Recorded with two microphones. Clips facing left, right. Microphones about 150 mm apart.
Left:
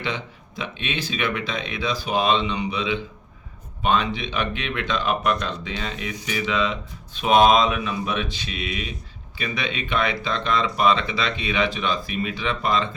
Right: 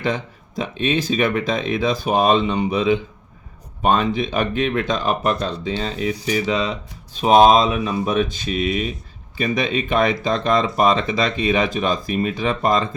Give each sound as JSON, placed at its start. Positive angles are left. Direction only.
{"t": 0.0, "sound": "speech", "side_deg": -45}